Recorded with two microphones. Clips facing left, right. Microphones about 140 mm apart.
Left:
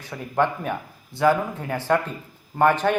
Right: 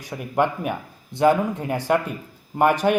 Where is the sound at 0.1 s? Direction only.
15° right (ahead or behind).